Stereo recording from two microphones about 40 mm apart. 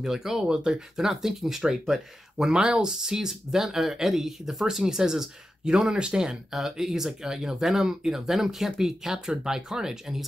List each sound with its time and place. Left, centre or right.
0.0 s speech: centre
5.9 s speech: right
6.5 s speech: centre